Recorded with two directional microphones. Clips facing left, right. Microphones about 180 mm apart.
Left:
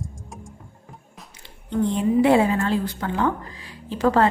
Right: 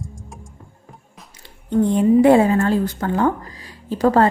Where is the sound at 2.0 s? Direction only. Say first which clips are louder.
Right 5 dB; 45° right (ahead or behind).